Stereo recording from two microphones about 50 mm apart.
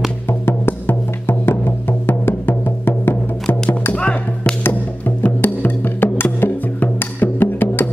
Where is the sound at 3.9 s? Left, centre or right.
Left.